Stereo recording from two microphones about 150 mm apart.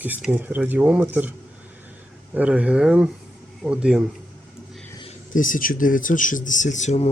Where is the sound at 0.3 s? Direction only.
10° right (ahead or behind).